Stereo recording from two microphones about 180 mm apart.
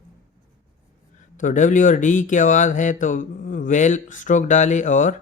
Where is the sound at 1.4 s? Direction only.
45° left (ahead or behind).